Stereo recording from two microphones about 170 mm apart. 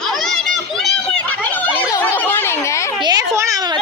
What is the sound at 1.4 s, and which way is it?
Children playing, 10° left (ahead or behind).